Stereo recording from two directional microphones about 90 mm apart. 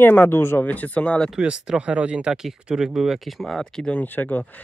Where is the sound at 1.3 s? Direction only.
10° right (ahead or behind); by 4.0 s 10° left (ahead or behind).